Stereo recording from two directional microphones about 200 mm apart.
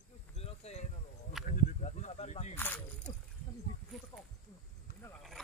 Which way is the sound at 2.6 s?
10° left (ahead or behind).